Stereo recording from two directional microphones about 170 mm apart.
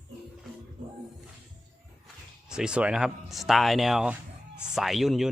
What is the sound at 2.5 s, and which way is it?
Speech, 5° right (ahead or behind).